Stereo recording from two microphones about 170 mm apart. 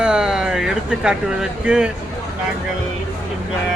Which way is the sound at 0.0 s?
5° right (ahead or behind).